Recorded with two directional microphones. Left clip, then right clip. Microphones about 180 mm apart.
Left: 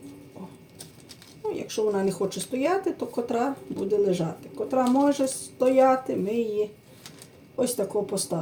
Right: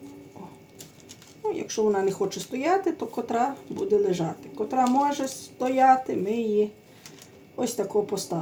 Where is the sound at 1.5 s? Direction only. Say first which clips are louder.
Right 1 dB; 15° right (ahead or behind).